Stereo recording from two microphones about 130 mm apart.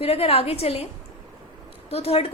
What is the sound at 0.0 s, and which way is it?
Speech, 50° left (ahead or behind).